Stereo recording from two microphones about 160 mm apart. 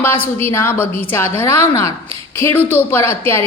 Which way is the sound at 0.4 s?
15° left (ahead or behind).